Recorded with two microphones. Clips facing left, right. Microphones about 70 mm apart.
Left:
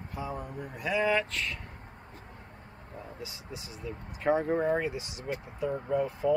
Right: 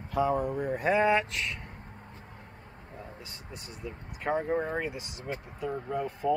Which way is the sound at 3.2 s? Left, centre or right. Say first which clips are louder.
Left 3 dB; centre.